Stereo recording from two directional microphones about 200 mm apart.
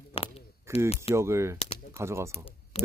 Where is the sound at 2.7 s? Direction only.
30° left (ahead or behind).